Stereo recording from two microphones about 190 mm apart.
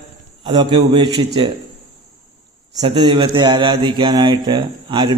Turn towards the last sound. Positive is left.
turn(degrees=-25)  # may be behind; listen again after turning